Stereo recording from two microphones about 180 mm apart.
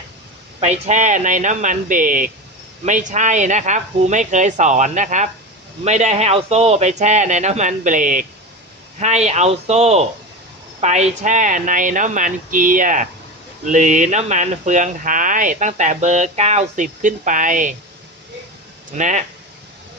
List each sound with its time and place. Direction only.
0.6 s speech: 40° right (ahead or behind)
18.9 s speech: 45° right (ahead or behind)